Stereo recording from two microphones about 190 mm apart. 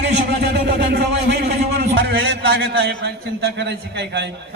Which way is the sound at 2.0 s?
85° right.